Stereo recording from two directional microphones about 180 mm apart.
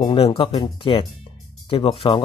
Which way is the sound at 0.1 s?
30° left (ahead or behind).